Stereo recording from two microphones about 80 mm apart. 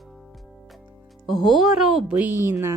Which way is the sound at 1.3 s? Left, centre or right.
Centre.